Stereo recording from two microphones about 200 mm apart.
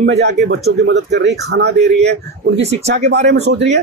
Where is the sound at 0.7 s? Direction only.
60° right (ahead or behind).